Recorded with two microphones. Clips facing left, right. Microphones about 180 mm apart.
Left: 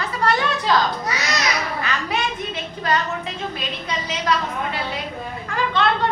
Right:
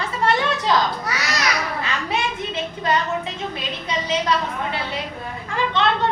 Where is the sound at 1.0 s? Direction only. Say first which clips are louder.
Left 1 dB; 20° left (ahead or behind).